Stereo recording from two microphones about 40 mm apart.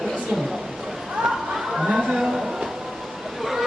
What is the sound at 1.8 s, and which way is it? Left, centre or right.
Speech, centre.